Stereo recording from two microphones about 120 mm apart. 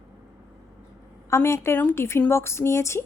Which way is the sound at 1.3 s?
25° left (ahead or behind).